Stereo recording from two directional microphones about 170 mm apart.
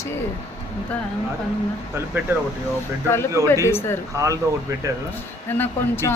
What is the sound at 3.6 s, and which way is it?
Speech, 15° left (ahead or behind).